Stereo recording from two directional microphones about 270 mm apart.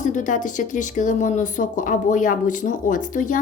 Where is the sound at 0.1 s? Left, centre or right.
Left.